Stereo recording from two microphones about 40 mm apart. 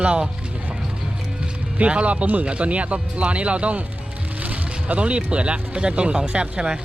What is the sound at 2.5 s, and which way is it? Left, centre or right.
Speech, right.